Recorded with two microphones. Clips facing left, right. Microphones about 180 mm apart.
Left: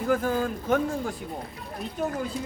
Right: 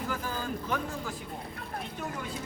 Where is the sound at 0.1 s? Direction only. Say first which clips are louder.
Left 9 dB; 55° left (ahead or behind).